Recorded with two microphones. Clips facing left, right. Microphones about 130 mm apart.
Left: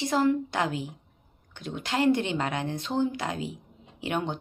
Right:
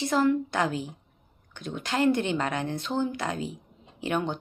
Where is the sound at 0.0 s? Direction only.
25° left (ahead or behind).